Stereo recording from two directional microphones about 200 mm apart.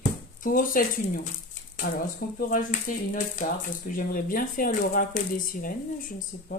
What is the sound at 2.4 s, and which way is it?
Speech, 45° left (ahead or behind).